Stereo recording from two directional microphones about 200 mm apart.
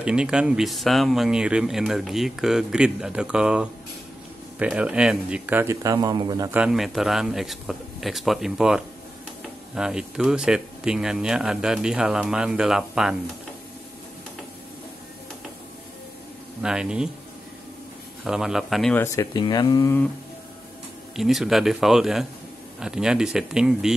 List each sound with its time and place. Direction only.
0.0 s speech: 5° right (ahead or behind)
6.6 s speech: centre (ahead or behind)
16.6 s speech: 5° right (ahead or behind)
18.2 s speech: centre (ahead or behind)
19.1 s speech: 20° left (ahead or behind)
21.2 s speech: centre (ahead or behind)